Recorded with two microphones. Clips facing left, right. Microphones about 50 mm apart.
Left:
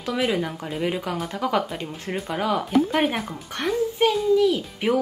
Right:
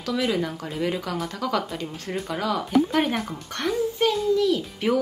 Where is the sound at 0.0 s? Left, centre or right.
Centre.